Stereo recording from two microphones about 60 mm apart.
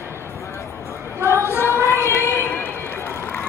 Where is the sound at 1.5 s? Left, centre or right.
Left.